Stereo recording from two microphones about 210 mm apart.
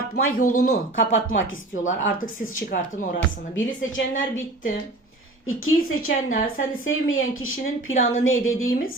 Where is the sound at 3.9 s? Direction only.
70° left (ahead or behind).